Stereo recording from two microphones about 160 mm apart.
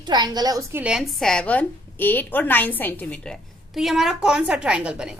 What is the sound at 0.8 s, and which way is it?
A woman's voice, 5° right (ahead or behind).